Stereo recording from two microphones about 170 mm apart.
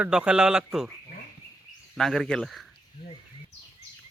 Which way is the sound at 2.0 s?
Centre (ahead or behind).